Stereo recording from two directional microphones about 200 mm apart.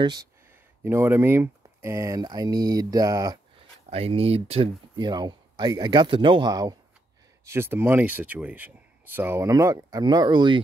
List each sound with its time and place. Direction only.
0.0 s speech: 20° right (ahead or behind)
3.9 s speech: 30° right (ahead or behind)